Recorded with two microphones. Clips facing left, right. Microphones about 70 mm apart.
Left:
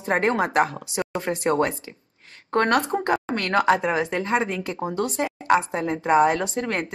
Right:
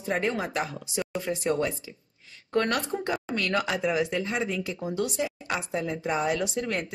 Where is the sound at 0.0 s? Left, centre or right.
Left.